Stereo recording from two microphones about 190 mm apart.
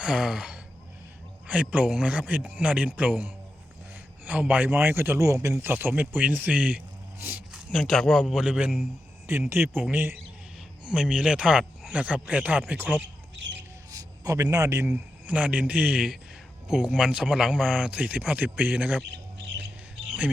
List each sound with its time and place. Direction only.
0.0 s a man's voice: 5° right (ahead or behind)
7.7 s a man's voice: centre (ahead or behind)
13.0 s squawk: 70° right (ahead or behind)
13.9 s a man's voice: 20° right (ahead or behind)